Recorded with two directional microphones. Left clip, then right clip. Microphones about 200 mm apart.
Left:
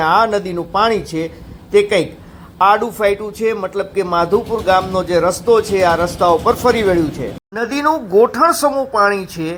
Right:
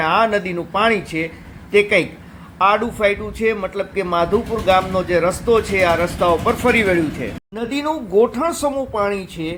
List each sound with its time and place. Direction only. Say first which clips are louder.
0.0 s a man's voice: left 3 dB; 10° left (ahead or behind)
9.1 s speech: left 4 dB; 35° left (ahead or behind)